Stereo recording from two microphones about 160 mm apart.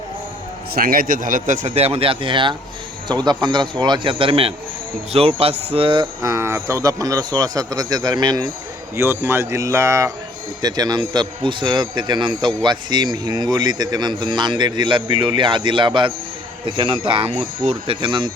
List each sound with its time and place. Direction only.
0.7 s speech: 65° right (ahead or behind); by 8.4 s 25° right (ahead or behind)
9.0 s speech: 15° right (ahead or behind); by 18.3 s 30° right (ahead or behind)